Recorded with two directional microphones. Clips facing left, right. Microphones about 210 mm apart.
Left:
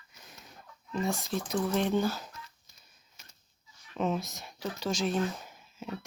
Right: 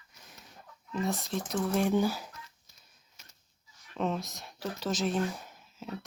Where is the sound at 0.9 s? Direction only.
Centre (ahead or behind).